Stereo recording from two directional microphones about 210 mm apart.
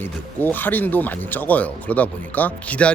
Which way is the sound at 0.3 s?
10° left (ahead or behind).